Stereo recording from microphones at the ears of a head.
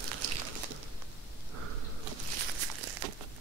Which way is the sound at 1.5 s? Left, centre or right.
Right.